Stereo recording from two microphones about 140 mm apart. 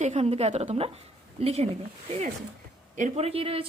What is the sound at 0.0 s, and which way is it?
Speech, 50° right (ahead or behind).